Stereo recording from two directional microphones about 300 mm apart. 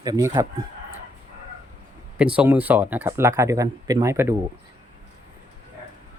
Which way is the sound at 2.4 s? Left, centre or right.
Centre.